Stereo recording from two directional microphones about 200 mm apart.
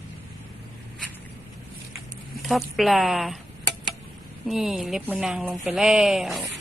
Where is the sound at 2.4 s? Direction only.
Centre (ahead or behind).